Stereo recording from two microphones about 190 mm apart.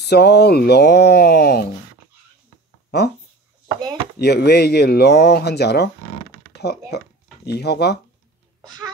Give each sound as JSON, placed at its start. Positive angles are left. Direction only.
{"t": 0.0, "sound": "speech", "side_deg": 60}
{"t": 2.9, "sound": "speech", "side_deg": 60}
{"t": 4.2, "sound": "speech", "side_deg": 60}
{"t": 8.5, "sound": "a sound", "side_deg": -20}